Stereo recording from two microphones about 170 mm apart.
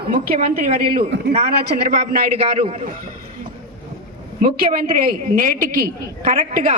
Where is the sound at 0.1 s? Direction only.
55° right (ahead or behind).